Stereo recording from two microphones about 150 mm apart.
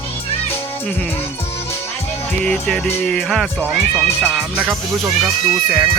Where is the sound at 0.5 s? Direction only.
20° left (ahead or behind).